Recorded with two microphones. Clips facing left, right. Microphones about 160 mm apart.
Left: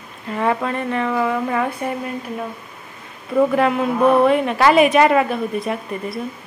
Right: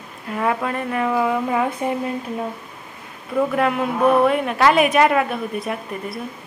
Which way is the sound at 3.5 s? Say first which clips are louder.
Left 3 dB; centre (ahead or behind).